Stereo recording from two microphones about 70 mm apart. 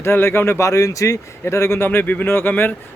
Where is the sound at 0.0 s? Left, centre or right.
Left.